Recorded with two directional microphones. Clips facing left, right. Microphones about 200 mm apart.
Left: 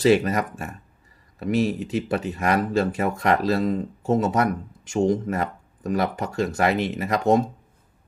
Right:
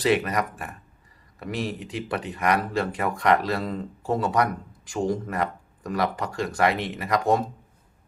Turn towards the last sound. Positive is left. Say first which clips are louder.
# left 3 dB
turn(degrees=20)  # may be behind; listen again after turning